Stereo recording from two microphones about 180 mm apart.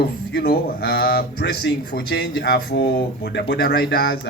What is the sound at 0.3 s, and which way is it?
A man's voice, 60° left (ahead or behind).